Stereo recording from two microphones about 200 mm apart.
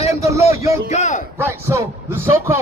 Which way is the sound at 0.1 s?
15° right (ahead or behind).